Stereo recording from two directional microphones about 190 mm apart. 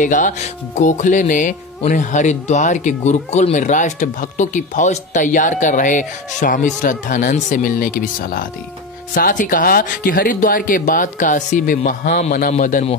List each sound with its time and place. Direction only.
0.0 s speech: 40° left (ahead or behind)